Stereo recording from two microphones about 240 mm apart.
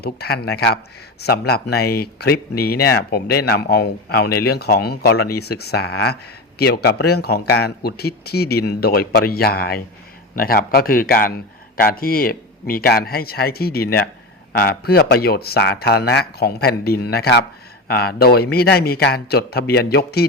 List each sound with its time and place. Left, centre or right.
0.0 s speech: left